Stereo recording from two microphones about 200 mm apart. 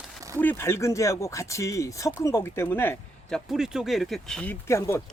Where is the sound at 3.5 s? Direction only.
Centre (ahead or behind); by 5.0 s 15° left (ahead or behind).